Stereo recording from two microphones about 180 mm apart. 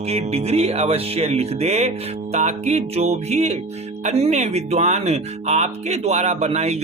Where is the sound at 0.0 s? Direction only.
35° right (ahead or behind).